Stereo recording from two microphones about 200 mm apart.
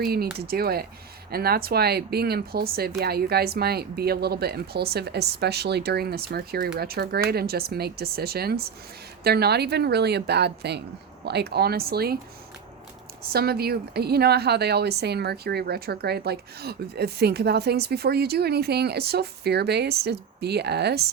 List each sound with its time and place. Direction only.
0.0 s a woman's voice: 50° right (ahead or behind)
13.2 s a woman's voice: 50° right (ahead or behind)